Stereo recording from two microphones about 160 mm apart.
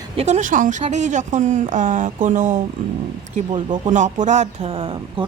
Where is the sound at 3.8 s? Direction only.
50° right (ahead or behind).